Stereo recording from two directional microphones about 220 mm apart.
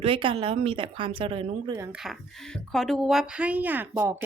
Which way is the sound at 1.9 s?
Centre (ahead or behind).